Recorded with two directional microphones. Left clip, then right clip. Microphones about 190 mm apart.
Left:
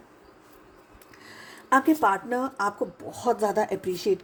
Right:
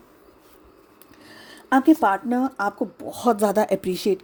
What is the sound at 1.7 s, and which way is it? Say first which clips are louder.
Speech: right 3 dB; 45° right (ahead or behind).